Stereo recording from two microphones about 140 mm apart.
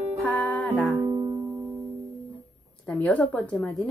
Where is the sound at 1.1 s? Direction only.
25° right (ahead or behind).